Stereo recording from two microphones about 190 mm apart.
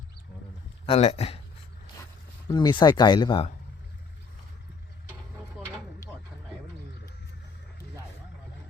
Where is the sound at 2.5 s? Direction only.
25° left (ahead or behind).